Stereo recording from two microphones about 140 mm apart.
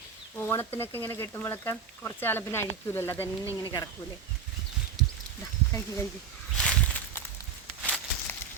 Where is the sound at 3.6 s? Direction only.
30° left (ahead or behind).